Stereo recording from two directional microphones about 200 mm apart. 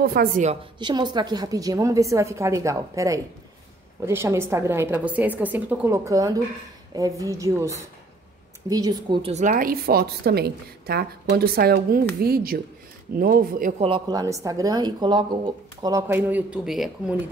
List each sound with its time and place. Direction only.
0.0 s a woman's voice: 50° right (ahead or behind)
0.7 s a woman's voice: 20° right (ahead or behind)
9.3 s a woman's voice: 40° right (ahead or behind)
13.7 s a woman's voice: 25° right (ahead or behind); by 17.2 s centre (ahead or behind)